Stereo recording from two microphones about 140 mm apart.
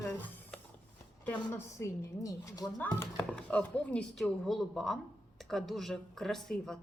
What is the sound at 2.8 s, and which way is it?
Chopping, 10° left (ahead or behind).